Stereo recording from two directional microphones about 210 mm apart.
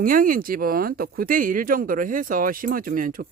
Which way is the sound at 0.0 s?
40° right (ahead or behind).